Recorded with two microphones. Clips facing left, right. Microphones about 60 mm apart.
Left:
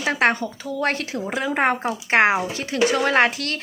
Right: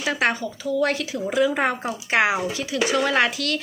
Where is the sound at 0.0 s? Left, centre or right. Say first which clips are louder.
Left 3 dB; left.